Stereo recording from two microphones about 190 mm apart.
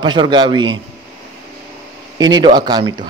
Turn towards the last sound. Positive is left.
turn(degrees=-25)  # may be behind; listen again after turning